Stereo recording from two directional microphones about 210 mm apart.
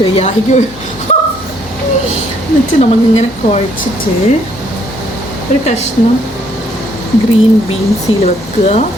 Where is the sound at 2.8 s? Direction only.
35° left (ahead or behind).